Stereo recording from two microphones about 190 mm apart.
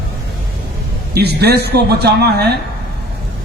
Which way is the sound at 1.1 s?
60° right (ahead or behind).